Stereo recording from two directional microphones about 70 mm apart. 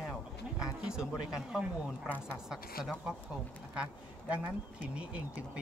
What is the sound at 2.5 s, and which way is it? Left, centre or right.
Speech, centre.